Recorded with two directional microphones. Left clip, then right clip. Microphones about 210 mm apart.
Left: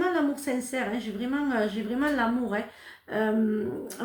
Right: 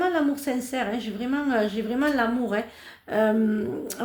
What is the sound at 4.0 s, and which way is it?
Speech, 45° right (ahead or behind).